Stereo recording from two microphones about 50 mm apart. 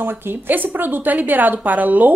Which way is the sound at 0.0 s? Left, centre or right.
Right.